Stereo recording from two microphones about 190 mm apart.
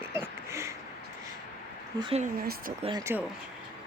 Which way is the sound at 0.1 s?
15° right (ahead or behind).